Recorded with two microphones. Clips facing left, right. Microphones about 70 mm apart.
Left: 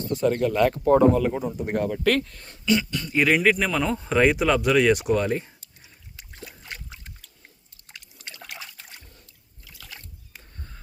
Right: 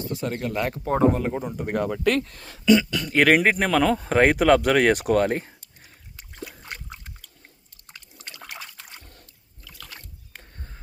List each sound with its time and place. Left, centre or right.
0.1 s speech: centre
0.9 s speech: right
1.4 s speech: right
1.7 s speech: right
3.4 s speech: right
3.7 s speech: right
9.7 s boat: right